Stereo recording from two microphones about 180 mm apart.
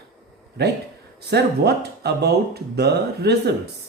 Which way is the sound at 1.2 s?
65° right (ahead or behind).